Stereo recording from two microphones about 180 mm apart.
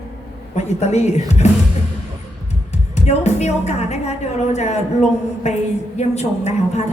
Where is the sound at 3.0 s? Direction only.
40° left (ahead or behind).